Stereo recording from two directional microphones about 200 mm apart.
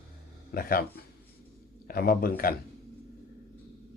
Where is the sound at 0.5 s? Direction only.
45° left (ahead or behind).